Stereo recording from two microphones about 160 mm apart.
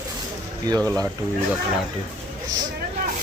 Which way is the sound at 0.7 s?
25° right (ahead or behind).